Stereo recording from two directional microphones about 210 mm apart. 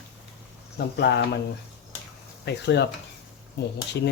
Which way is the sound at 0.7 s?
55° left (ahead or behind).